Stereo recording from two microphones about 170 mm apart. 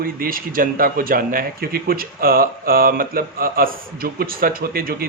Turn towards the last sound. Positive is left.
turn(degrees=-60)  # may be behind; listen again after turning